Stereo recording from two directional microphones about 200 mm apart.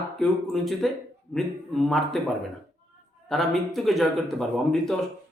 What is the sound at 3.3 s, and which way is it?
Speech, centre (ahead or behind).